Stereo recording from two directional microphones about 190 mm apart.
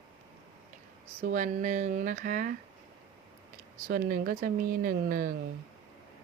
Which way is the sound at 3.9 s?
50° right (ahead or behind).